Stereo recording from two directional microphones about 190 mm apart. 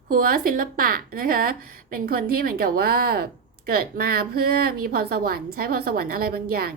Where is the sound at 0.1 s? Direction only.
50° right (ahead or behind).